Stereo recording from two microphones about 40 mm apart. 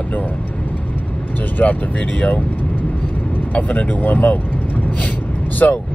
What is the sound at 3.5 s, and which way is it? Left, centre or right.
Speech, left.